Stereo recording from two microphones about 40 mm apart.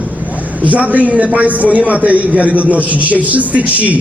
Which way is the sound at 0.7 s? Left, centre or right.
Right.